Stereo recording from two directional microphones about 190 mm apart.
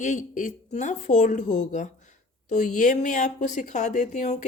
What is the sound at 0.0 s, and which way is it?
Speech, 40° left (ahead or behind).